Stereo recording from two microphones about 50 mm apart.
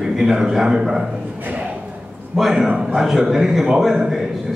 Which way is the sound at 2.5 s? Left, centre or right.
Centre.